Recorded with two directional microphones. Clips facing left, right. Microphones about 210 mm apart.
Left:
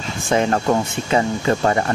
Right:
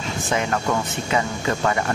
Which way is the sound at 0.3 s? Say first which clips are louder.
Left 6 dB; 30° left (ahead or behind).